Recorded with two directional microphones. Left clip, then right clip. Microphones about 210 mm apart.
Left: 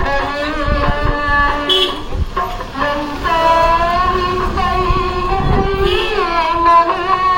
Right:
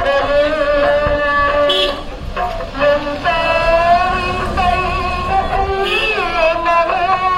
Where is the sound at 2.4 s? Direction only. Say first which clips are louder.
Right 1 dB; 50° right (ahead or behind).